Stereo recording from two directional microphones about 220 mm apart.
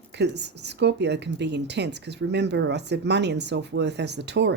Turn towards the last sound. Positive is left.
turn(degrees=-50)  # may be behind; listen again after turning